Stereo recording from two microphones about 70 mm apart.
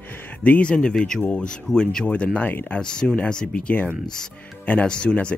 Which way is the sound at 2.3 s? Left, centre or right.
Left.